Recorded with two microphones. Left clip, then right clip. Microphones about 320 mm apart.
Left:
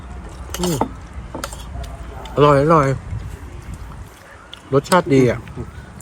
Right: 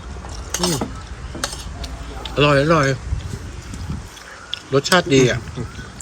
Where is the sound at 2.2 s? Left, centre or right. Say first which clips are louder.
Left 3 dB; centre.